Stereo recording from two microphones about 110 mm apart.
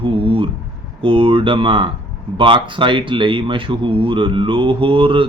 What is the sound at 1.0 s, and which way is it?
Speech, 55° right (ahead or behind).